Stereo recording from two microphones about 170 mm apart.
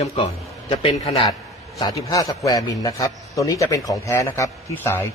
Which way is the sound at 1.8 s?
20° left (ahead or behind).